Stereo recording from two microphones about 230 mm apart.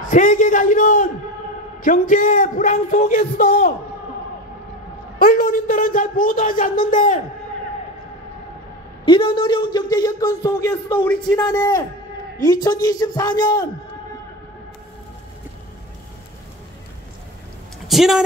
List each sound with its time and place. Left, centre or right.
0.1 s a sound: left
1.8 s a man's voice: left
5.2 s a man's voice: left
9.0 s speech: left
11.4 s speech: centre
17.8 s a sound: centre